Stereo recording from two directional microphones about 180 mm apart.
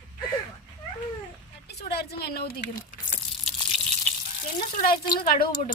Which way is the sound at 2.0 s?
65° left (ahead or behind).